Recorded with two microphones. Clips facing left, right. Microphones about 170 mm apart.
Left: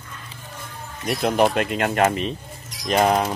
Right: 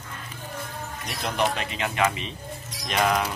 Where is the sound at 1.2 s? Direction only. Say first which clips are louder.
Left 7 dB; 50° left (ahead or behind).